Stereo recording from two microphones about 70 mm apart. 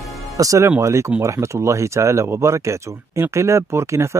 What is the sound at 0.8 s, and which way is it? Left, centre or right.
A man's voice, right.